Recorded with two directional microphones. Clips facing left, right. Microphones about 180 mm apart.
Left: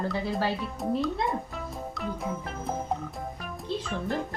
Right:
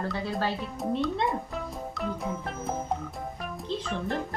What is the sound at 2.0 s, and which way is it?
Music, centre (ahead or behind).